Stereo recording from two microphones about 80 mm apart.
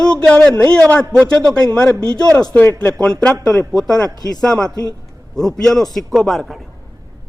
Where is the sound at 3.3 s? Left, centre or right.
Right.